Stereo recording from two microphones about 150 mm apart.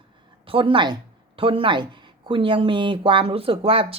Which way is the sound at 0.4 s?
35° right (ahead or behind).